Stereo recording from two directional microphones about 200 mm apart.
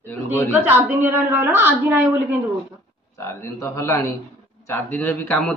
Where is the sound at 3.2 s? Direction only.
15° left (ahead or behind).